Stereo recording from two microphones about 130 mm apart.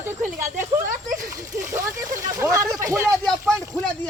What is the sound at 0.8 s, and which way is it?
Speech, 90° right.